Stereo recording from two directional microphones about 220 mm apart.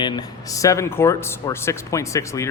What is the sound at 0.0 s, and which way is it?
A man's voice, 15° left (ahead or behind).